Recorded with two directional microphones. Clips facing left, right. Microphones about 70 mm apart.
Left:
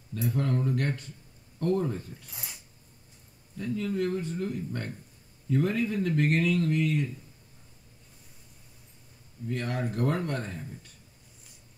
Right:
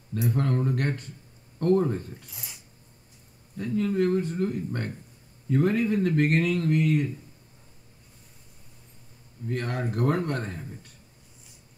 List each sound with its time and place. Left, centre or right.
0.1 s speech: right
3.5 s speech: right
9.5 s speech: right